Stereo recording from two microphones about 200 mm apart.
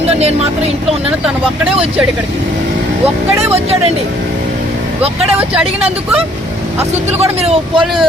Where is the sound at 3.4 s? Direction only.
30° right (ahead or behind).